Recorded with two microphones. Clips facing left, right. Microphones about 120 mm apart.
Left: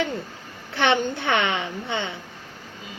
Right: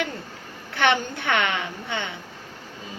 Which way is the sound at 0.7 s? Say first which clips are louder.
Left 1 dB; 25° left (ahead or behind).